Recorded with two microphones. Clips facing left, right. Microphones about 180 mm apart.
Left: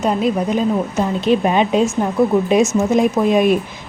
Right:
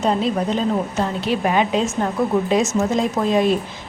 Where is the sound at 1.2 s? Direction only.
20° left (ahead or behind).